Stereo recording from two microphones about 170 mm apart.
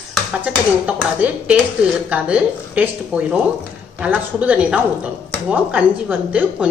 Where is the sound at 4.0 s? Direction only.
10° right (ahead or behind).